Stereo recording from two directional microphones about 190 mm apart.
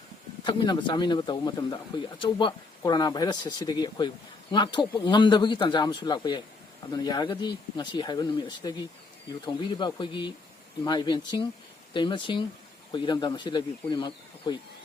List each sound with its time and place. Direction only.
0.4 s speech: 25° left (ahead or behind)